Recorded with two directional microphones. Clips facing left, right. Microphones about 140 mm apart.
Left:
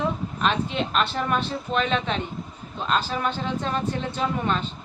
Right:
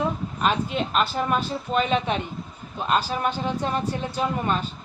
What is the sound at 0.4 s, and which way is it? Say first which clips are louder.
Speech: right 1 dB; 5° right (ahead or behind).